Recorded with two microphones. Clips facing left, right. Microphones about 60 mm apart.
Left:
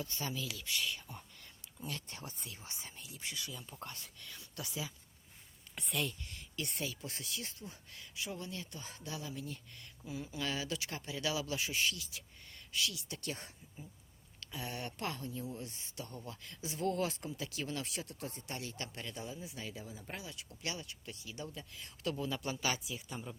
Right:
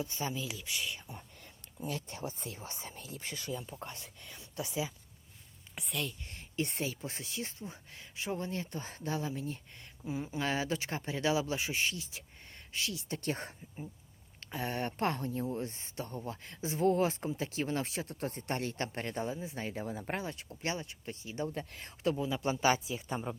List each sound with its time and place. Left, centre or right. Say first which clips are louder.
0.0 s speech: right 4 dB; centre; by 3.7 s right
3.7 s speech: right 3 dB; right
5.8 s a woman's voice: even; centre
6.2 s speech: right 7 dB; right
19.8 s speech: right 9 dB; right
21.5 s speech: right 8 dB; right
22.0 s a man's voice: right 5 dB; centre
22.4 s speech: right 8 dB; right